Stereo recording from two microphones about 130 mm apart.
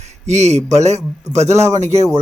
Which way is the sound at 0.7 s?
60° right (ahead or behind).